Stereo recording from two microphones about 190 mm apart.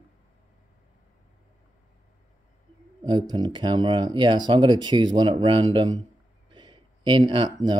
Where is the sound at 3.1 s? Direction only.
25° right (ahead or behind).